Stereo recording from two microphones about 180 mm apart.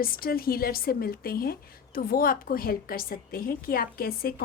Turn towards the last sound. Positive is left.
turn(degrees=55)  # may be behind; listen again after turning